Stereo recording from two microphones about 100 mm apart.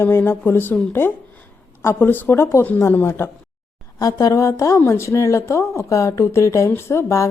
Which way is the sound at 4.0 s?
35° left (ahead or behind).